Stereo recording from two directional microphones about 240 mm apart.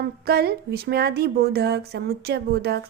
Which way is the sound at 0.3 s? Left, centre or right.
Right.